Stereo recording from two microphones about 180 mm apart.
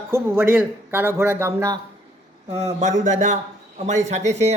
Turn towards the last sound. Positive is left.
turn(degrees=-40)  # may be behind; listen again after turning